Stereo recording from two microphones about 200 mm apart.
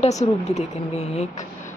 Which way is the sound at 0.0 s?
35° left (ahead or behind).